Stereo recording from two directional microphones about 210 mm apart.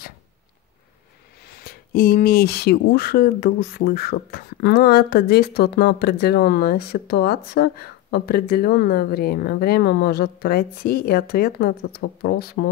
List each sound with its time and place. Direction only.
1.6 s speech: 45° left (ahead or behind)